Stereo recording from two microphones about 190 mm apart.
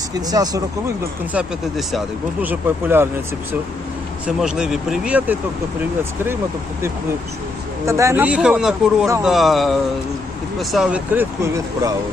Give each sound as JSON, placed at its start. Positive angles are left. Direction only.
{"t": 0.3, "sound": "speech", "side_deg": -20}
{"t": 1.3, "sound": "speech", "side_deg": -5}
{"t": 4.3, "sound": "speech", "side_deg": -5}
{"t": 7.9, "sound": "speech", "side_deg": -15}